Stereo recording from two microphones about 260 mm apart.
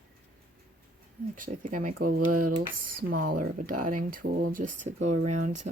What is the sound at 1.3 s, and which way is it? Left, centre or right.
Speech, right.